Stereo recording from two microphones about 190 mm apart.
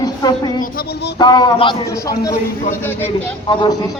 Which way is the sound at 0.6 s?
50° left (ahead or behind).